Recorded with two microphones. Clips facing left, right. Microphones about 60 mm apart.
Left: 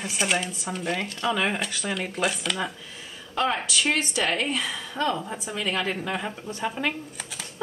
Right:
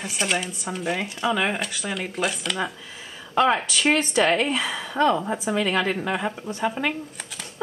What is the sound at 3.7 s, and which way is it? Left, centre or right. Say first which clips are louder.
Speech: right 4 dB; right.